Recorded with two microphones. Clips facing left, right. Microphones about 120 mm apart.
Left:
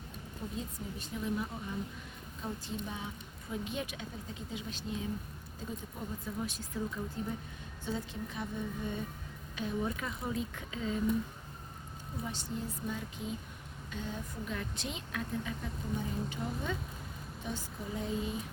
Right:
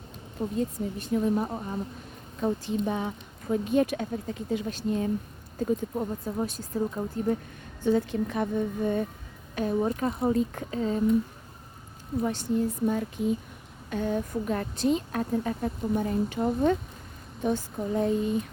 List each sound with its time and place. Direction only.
0.4 s speech: 90° right
1.1 s a woman's voice: 50° right (ahead or behind)
2.4 s speech: 70° right (ahead or behind)
6.2 s speech: 40° right (ahead or behind)
7.9 s speech: 65° right (ahead or behind)
9.6 s a woman's voice: 45° right (ahead or behind)
12.2 s a woman's voice: 55° right (ahead or behind)